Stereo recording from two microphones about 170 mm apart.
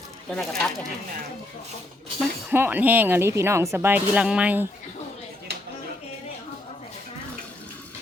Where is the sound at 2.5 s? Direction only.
10° right (ahead or behind).